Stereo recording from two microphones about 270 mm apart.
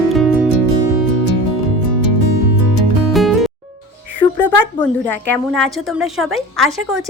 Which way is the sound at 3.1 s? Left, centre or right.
Centre.